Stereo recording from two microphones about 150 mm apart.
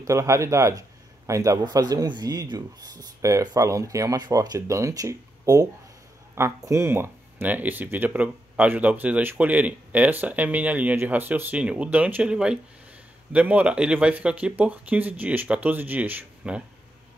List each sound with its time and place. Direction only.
0.0 s a man's voice: 20° right (ahead or behind)